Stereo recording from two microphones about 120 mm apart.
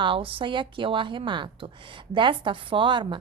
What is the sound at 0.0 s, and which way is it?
A woman's voice, 50° right (ahead or behind).